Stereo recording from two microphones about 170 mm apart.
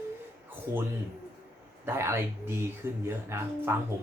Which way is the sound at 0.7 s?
15° right (ahead or behind).